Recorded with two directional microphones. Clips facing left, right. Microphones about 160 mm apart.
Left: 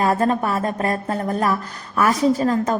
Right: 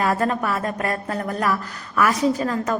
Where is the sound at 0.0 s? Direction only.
30° left (ahead or behind).